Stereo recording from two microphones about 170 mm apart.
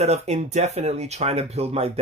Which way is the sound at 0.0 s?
40° right (ahead or behind).